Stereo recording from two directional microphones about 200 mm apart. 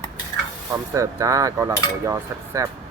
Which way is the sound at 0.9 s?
15° right (ahead or behind).